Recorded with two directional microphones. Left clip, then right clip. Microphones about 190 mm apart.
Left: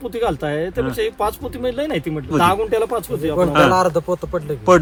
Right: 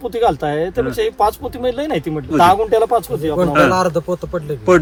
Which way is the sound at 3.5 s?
20° left (ahead or behind).